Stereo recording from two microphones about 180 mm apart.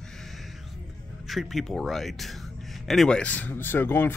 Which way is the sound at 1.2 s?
Centre (ahead or behind).